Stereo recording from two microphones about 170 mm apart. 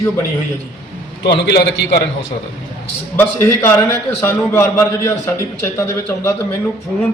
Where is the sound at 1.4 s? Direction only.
80° left.